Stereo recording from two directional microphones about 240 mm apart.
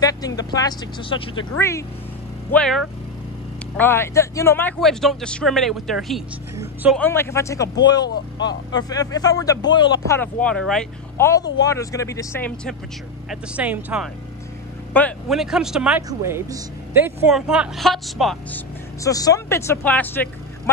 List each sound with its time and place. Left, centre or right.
0.0 s speech: centre
7.0 s speech: centre
13.3 s speech: centre
14.9 s speech: centre
19.0 s speech: centre